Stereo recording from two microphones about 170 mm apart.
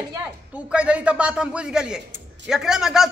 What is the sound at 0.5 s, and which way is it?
A man's voice, 5° right (ahead or behind).